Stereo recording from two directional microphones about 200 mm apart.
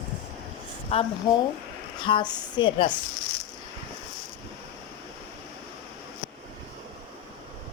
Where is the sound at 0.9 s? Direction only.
30° left (ahead or behind).